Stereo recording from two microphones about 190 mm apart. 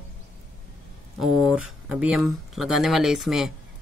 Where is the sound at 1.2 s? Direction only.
Centre (ahead or behind).